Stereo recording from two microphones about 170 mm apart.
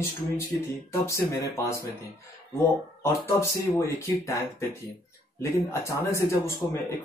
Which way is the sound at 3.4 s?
15° left (ahead or behind).